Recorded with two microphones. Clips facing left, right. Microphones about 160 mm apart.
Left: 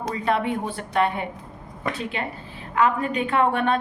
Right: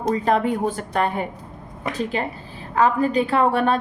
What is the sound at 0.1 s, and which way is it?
A woman's voice, 40° right (ahead or behind).